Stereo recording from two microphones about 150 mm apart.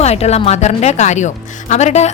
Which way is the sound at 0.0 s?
45° left (ahead or behind).